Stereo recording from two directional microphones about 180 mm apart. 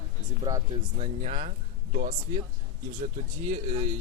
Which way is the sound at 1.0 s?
40° right (ahead or behind).